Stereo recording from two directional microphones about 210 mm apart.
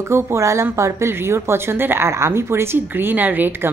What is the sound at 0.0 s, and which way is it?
A woman's voice, 10° right (ahead or behind).